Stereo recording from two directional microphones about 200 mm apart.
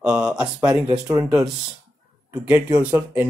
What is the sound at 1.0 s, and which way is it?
Speech, 15° right (ahead or behind).